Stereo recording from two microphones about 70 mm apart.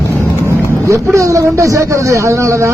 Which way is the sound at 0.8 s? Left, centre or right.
Right.